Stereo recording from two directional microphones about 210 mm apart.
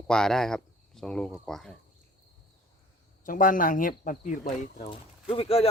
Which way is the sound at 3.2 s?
40° left (ahead or behind).